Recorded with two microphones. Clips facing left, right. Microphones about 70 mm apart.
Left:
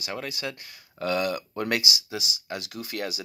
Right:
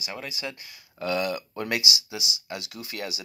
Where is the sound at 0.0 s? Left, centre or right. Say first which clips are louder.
Left 2 dB; left.